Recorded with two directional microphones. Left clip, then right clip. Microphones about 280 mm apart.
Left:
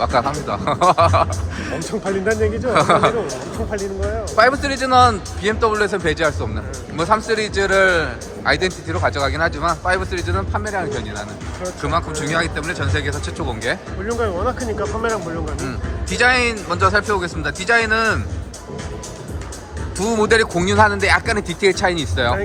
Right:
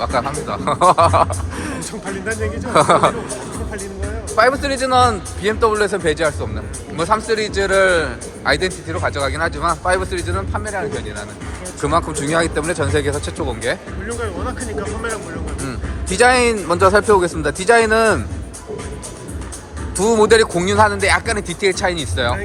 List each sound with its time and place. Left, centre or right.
0.0 s a man's voice: centre
1.9 s speech: left
2.7 s a man's voice: centre
4.4 s a man's voice: centre
14.1 s speech: left
15.6 s speech: centre
20.0 s a man's voice: centre